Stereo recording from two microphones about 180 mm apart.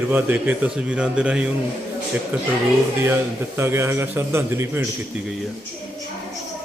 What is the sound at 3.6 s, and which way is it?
Speech, 15° right (ahead or behind).